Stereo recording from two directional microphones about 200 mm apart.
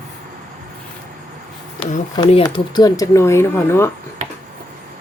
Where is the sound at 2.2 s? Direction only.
25° left (ahead or behind).